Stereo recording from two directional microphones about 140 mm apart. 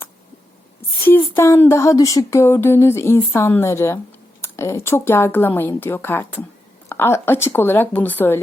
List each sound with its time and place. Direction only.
1.0 s a woman's voice: 15° left (ahead or behind)